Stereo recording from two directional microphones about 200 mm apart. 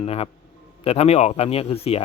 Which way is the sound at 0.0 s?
30° left (ahead or behind).